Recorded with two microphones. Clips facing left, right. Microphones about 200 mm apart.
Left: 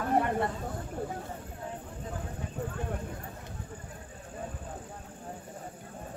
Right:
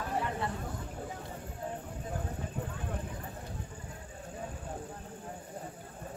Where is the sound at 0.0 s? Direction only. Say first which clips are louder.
Left 7 dB; 55° left (ahead or behind).